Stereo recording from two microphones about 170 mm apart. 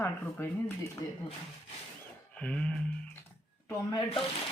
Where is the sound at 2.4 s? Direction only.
5° left (ahead or behind).